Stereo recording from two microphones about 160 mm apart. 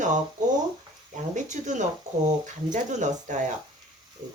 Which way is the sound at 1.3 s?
50° right (ahead or behind).